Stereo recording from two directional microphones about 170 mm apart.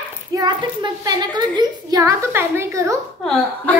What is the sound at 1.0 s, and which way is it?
A woman's voice, 25° right (ahead or behind).